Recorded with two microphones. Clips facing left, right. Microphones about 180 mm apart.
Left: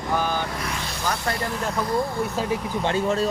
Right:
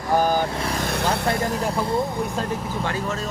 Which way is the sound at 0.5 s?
30° right (ahead or behind).